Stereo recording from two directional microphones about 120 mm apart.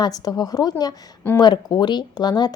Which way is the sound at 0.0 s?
30° left (ahead or behind).